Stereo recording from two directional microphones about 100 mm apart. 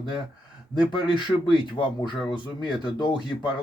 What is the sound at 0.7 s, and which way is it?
Speech, 50° left (ahead or behind).